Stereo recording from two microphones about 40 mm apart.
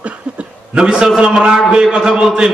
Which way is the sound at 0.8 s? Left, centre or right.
Right.